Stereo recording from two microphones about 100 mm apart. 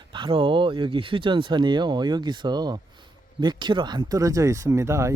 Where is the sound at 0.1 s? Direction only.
55° right (ahead or behind).